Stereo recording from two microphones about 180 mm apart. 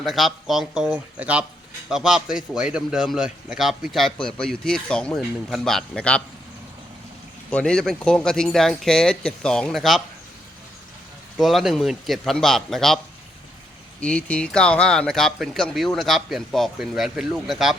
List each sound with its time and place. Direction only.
0.0 s a man's voice: centre (ahead or behind)
7.5 s a man's voice: 5° left (ahead or behind)
11.3 s a man's voice: centre (ahead or behind)
14.0 s a man's voice: 5° left (ahead or behind)